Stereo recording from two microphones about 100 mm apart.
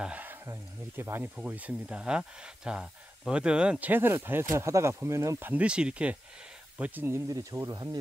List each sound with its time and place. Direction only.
0.0 s a sound: 15° right (ahead or behind)
0.5 s speech: 25° right (ahead or behind)
1.3 s speech: 10° right (ahead or behind); by 5.5 s 30° right (ahead or behind)
5.5 s speech: 10° right (ahead or behind); by 8.0 s 40° right (ahead or behind)